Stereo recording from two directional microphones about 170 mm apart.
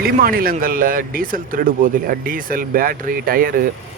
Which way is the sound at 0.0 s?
60° right (ahead or behind).